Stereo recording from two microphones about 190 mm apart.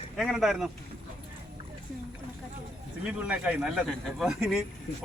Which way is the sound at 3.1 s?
5° right (ahead or behind).